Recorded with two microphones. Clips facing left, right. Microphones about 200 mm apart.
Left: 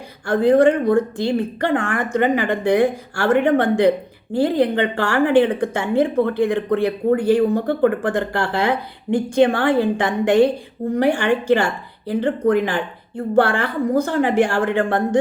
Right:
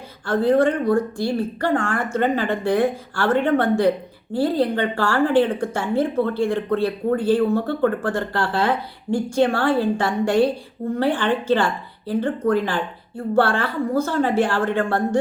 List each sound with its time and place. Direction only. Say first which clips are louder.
0.3 s speech: left 4 dB; 15° left (ahead or behind)